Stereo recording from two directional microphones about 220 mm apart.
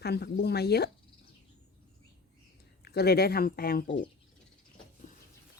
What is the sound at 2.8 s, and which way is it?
Speech, 45° left (ahead or behind).